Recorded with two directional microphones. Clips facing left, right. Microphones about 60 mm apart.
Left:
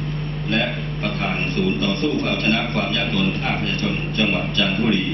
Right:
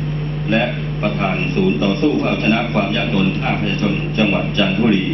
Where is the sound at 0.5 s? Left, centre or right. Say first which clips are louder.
Right 5 dB; centre.